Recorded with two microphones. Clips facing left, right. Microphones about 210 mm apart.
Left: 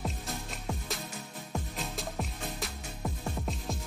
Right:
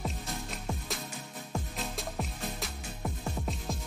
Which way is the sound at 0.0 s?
Centre (ahead or behind).